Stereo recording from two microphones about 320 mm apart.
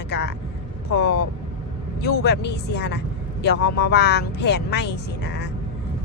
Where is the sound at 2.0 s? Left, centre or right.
Left.